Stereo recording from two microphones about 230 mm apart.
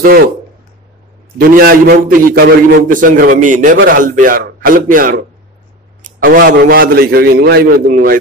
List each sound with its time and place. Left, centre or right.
1.4 s a man's voice: right